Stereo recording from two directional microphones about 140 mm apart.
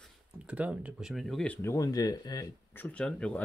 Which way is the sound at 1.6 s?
20° left (ahead or behind).